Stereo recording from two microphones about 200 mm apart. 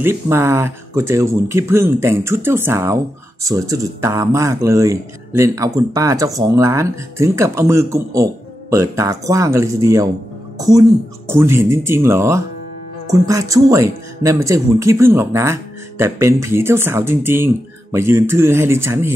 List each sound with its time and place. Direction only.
0.0 s speech: 10° right (ahead or behind)